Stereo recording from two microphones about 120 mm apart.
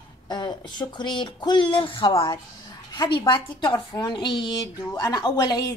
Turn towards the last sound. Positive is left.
turn(degrees=35)  # may be behind; listen again after turning